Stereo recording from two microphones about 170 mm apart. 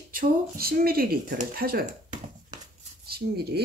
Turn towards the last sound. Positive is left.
turn(degrees=-65)  # may be behind; listen again after turning